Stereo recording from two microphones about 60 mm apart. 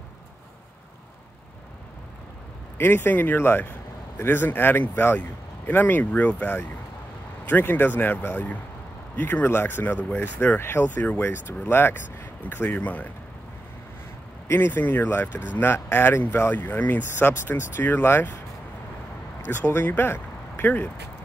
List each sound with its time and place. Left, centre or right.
2.8 s speech: left
10.6 s speech: left
14.5 s speech: left
19.5 s speech: left